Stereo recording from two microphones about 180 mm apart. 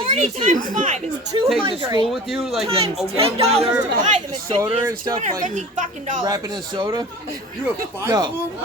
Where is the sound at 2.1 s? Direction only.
Centre (ahead or behind).